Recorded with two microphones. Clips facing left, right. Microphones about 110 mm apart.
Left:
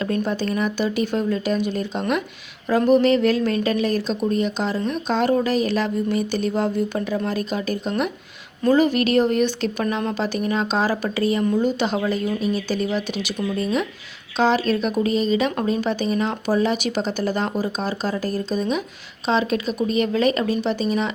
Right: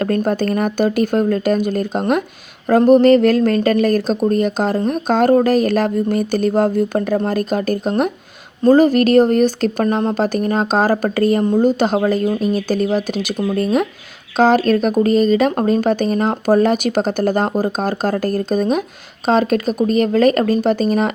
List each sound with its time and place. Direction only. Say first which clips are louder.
0.0 s speech: right 6 dB; 50° right (ahead or behind)